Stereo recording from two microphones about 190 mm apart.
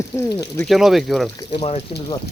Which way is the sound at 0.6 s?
Centre (ahead or behind).